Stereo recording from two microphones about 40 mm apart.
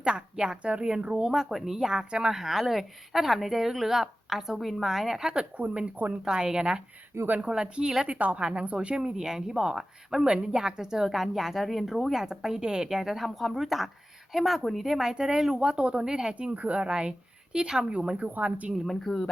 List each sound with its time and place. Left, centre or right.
0.0 s a woman's voice: right
1.2 s a woman's voice: centre
2.3 s a woman's voice: centre
5.5 s speech: right
6.2 s a woman's voice: centre
7.3 s speech: right
7.5 s a woman's voice: centre
12.1 s a woman's voice: centre
15.1 s speech: centre
16.4 s speech: right
18.2 s speech: right
18.9 s speech: centre